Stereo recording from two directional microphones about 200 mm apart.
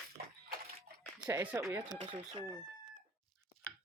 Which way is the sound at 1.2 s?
10° right (ahead or behind).